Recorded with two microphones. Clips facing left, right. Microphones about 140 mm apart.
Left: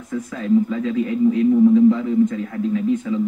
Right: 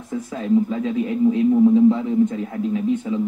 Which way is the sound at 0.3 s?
30° right (ahead or behind).